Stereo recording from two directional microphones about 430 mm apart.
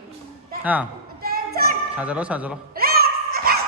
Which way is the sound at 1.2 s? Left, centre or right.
Right.